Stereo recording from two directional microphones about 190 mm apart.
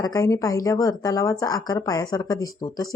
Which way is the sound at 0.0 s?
15° left (ahead or behind).